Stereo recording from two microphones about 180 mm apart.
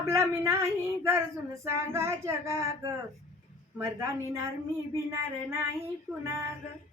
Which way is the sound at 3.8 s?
15° right (ahead or behind).